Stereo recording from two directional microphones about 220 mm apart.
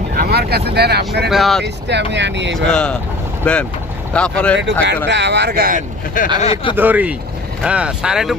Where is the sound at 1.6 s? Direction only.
50° right (ahead or behind).